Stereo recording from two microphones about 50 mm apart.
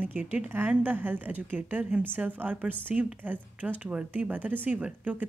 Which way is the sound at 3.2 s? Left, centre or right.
Right.